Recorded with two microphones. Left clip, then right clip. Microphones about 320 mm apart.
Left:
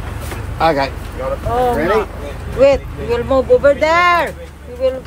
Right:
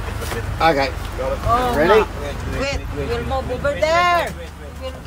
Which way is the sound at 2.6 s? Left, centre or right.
Centre.